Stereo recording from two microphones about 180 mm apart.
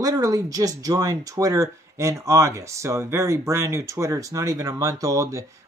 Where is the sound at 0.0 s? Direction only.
20° right (ahead or behind).